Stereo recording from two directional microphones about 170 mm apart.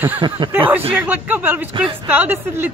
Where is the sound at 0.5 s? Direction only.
10° right (ahead or behind).